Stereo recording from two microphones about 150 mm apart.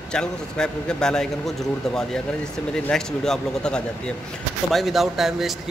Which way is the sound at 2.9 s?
5° left (ahead or behind).